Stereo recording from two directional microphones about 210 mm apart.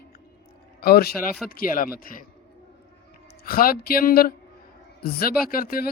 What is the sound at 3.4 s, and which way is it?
A man's voice, 45° left (ahead or behind).